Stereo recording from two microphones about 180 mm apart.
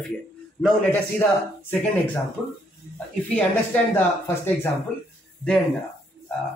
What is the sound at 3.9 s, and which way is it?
Speech, 10° left (ahead or behind).